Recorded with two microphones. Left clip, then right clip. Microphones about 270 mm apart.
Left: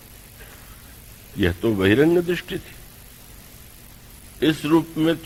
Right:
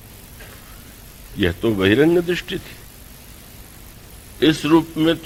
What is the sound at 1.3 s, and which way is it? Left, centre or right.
A man's voice, right.